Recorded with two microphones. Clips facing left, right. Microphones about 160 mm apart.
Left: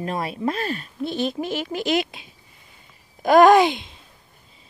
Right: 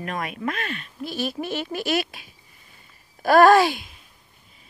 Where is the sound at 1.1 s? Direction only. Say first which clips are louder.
Left 2 dB; 20° left (ahead or behind).